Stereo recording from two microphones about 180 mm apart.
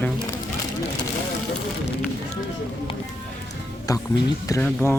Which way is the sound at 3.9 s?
20° left (ahead or behind).